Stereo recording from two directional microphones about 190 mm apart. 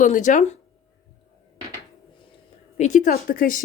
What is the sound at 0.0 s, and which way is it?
Speech, 40° left (ahead or behind).